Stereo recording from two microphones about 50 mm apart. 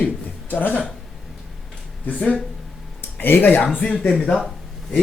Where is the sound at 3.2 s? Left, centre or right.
Left.